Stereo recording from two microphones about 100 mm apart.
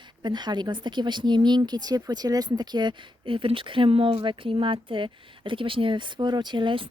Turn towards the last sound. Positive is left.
turn(degrees=-60)  # may be behind; listen again after turning